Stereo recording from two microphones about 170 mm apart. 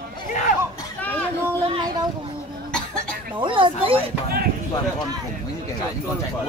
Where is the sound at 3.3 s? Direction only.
30° right (ahead or behind).